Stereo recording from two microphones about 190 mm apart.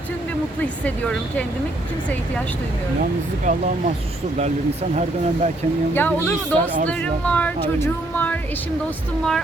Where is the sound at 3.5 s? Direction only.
40° right (ahead or behind).